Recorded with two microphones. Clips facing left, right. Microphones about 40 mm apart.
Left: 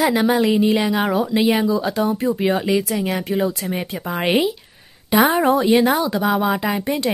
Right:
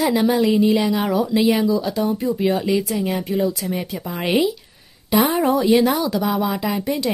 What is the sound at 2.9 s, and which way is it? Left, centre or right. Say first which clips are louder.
Speech: even; centre.